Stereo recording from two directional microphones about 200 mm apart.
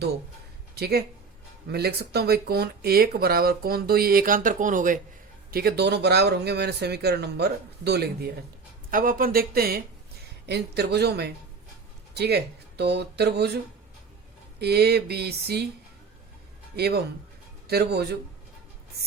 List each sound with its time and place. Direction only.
0.8 s speech: 55° right (ahead or behind)
14.6 s speech: 55° right (ahead or behind)
16.7 s speech: 55° right (ahead or behind)